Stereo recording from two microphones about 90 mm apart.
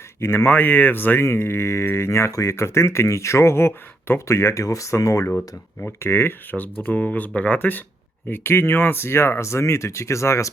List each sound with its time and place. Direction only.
0.2 s speech: 25° left (ahead or behind)
5.3 s speech: 15° left (ahead or behind); by 10.5 s 35° left (ahead or behind)